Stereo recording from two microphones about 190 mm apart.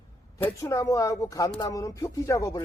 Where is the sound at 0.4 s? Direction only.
15° left (ahead or behind).